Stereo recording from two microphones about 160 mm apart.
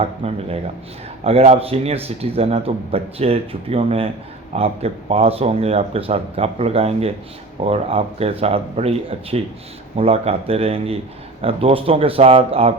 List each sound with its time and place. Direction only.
0.0 s a man's voice: 40° right (ahead or behind)